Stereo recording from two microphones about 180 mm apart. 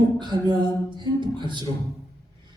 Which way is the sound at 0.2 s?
25° right (ahead or behind).